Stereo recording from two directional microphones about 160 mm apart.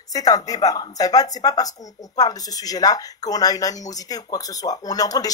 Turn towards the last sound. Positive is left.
turn(degrees=25)  # may be behind; listen again after turning